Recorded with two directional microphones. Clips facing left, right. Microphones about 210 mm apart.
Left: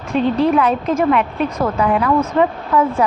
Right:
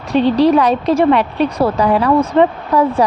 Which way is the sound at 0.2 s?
80° right.